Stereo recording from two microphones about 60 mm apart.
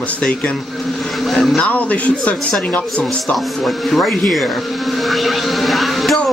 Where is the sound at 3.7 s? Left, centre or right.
Centre.